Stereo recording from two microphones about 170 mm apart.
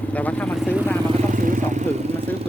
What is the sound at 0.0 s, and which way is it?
Vehicle, 10° left (ahead or behind).